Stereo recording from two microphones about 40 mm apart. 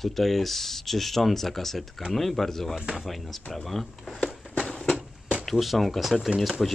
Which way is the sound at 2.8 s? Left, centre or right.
Centre.